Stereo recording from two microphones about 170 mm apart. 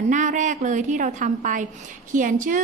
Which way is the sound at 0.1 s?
50° right (ahead or behind).